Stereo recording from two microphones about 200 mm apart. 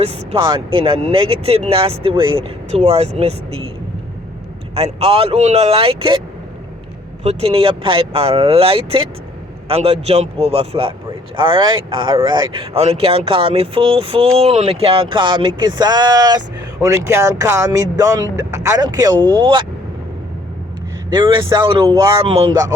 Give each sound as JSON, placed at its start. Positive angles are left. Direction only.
{"t": 0.0, "sound": "speech", "side_deg": -25}
{"t": 4.7, "sound": "speech", "side_deg": -30}
{"t": 7.3, "sound": "speech", "side_deg": -30}
{"t": 21.1, "sound": "speech", "side_deg": -25}